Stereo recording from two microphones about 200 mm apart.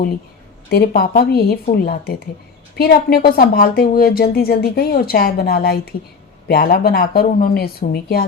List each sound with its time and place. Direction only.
0.7 s speech: 50° left (ahead or behind)